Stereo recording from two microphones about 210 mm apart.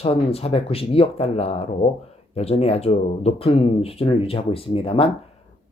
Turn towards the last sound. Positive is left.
turn(degrees=25)  # may be behind; listen again after turning